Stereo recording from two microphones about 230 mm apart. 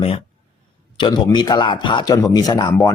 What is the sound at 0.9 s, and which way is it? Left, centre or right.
A man's voice, centre.